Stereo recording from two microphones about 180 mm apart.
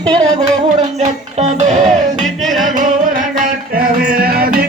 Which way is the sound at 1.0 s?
40° right (ahead or behind).